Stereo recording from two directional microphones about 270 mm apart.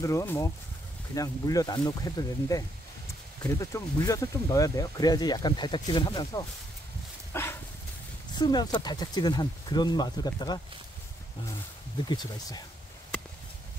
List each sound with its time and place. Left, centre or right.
0.0 s speech: centre
7.3 s dog: centre
8.4 s speech: centre
12.1 s speech: centre